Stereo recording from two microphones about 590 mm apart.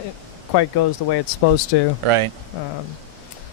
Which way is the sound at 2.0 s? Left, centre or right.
Right.